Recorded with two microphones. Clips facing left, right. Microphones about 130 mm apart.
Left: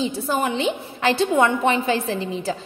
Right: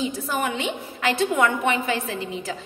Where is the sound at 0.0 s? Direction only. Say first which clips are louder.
Left 3 dB; 30° left (ahead or behind).